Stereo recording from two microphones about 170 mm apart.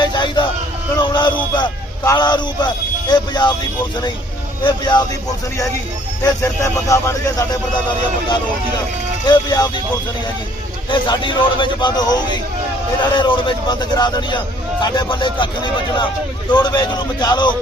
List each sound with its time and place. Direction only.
0.0 s a sound: 25° left (ahead or behind)
1.4 s vehicle: 25° left (ahead or behind)
3.1 s a man's voice: 25° left (ahead or behind)
4.6 s a man's voice: 25° left (ahead or behind)
6.2 s a man's voice: 20° left (ahead or behind)
9.2 s a man's voice: 25° left (ahead or behind)
10.8 s a man's voice: 30° left (ahead or behind)